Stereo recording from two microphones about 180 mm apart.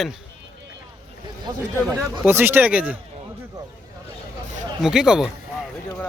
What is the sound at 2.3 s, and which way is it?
Speech, 10° right (ahead or behind).